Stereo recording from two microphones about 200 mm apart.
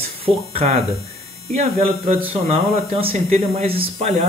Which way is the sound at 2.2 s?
30° right (ahead or behind).